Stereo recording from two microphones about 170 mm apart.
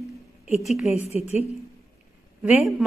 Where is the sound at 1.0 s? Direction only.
40° left (ahead or behind).